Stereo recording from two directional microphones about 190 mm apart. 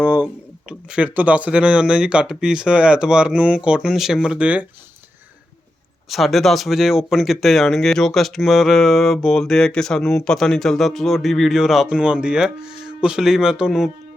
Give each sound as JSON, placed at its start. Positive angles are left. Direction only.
{"t": 0.0, "sound": "speech", "side_deg": -10}
{"t": 6.1, "sound": "speech", "side_deg": 0}